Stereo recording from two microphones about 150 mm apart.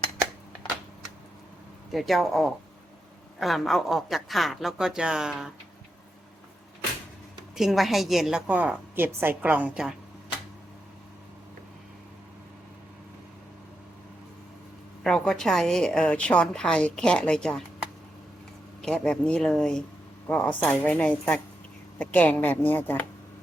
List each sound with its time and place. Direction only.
1.9 s a woman's voice: centre (ahead or behind)
7.5 s a woman's voice: centre (ahead or behind)
15.0 s a woman's voice: 5° left (ahead or behind)